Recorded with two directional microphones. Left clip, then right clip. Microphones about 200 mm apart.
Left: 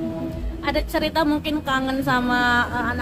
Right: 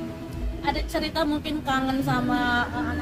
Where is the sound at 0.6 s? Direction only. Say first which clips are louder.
Left 4 dB; 25° left (ahead or behind).